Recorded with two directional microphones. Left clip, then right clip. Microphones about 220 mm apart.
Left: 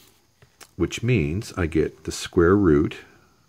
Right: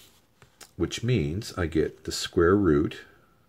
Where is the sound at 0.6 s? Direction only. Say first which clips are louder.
Left 4 dB; 25° left (ahead or behind).